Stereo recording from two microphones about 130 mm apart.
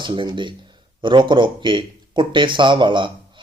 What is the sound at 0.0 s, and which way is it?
Speech, 40° right (ahead or behind).